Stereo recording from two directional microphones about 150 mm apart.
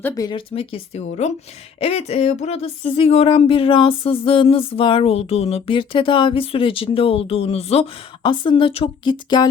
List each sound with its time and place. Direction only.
0.3 s speech: 35° left (ahead or behind)